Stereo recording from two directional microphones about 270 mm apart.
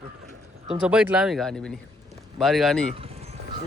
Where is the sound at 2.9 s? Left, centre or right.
Right.